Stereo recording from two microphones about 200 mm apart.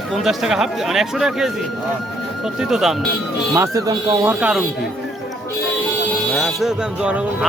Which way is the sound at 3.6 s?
15° right (ahead or behind).